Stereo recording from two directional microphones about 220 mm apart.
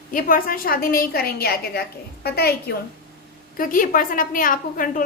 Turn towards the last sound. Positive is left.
turn(degrees=40)  # may be behind; listen again after turning